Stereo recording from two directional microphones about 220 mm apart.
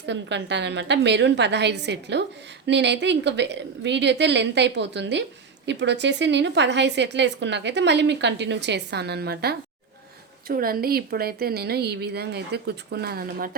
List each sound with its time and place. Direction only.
0.0 s a woman's voice: 55° right (ahead or behind)